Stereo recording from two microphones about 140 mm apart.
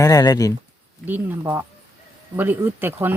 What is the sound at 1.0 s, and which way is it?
Speech, 15° right (ahead or behind).